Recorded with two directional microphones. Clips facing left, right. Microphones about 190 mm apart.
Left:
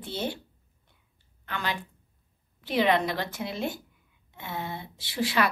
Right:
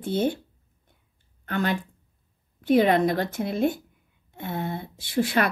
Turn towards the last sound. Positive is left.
turn(degrees=-50)  # may be behind; listen again after turning